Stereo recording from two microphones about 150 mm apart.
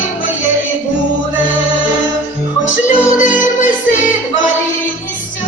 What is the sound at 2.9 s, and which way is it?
Music, 60° left (ahead or behind).